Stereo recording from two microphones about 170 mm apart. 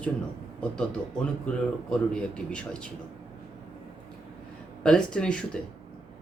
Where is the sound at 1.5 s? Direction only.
10° left (ahead or behind).